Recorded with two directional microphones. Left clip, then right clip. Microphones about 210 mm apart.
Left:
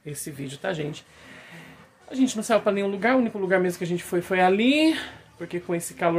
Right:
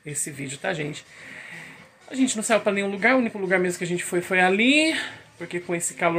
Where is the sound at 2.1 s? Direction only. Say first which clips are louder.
Even; 5° left (ahead or behind).